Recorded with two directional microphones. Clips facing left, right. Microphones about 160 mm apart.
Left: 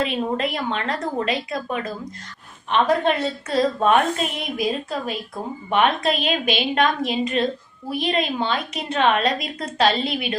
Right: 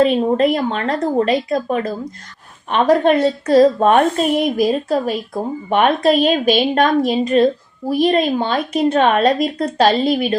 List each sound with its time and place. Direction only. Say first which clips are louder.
0.0 s a woman's voice: right 9 dB; 40° right (ahead or behind)